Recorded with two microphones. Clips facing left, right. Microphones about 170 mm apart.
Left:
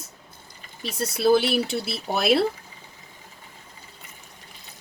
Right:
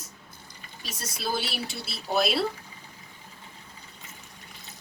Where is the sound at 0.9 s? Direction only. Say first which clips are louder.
Left 12 dB; 60° left (ahead or behind).